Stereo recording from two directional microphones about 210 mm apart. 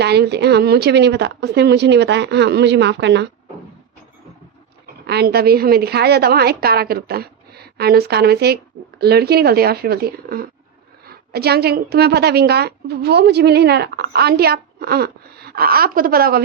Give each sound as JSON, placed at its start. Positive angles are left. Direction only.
{"t": 0.0, "sound": "a woman's voice", "side_deg": -50}
{"t": 5.0, "sound": "a woman's voice", "side_deg": -50}